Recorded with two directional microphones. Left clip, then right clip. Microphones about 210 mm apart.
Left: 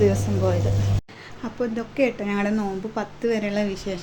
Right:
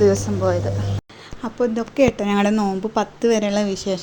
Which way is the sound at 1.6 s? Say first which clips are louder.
Right 5 dB; 30° right (ahead or behind).